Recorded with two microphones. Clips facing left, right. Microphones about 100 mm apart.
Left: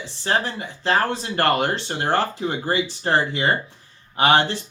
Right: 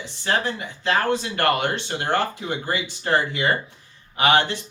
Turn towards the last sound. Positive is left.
turn(degrees=30)  # may be behind; listen again after turning